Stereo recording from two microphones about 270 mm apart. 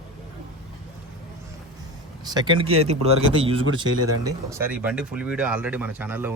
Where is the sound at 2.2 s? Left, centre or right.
Centre.